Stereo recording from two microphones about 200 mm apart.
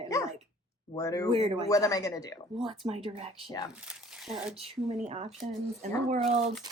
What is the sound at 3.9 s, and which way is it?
Speech, 5° right (ahead or behind).